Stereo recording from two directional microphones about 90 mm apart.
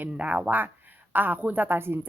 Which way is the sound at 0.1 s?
15° right (ahead or behind).